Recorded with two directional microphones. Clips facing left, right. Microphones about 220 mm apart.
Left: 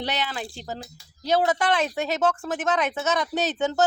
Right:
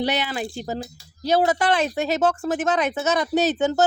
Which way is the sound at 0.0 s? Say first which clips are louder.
Right 5 dB; 10° right (ahead or behind).